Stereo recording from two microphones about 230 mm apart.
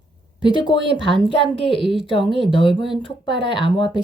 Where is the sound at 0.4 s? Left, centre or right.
Centre.